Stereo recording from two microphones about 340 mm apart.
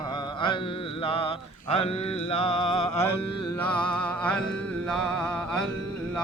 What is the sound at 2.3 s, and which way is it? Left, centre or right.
Mantra, centre.